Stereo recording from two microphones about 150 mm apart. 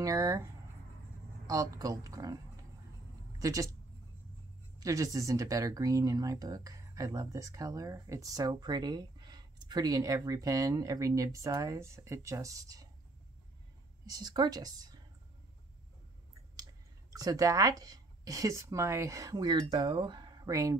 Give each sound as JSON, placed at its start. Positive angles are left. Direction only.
{"t": 0.0, "sound": "speech", "side_deg": -20}
{"t": 1.5, "sound": "speech", "side_deg": -25}
{"t": 4.7, "sound": "speech", "side_deg": -25}
{"t": 14.1, "sound": "speech", "side_deg": -25}
{"t": 17.1, "sound": "speech", "side_deg": -25}